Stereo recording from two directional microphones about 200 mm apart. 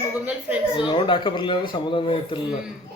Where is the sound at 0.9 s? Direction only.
25° left (ahead or behind).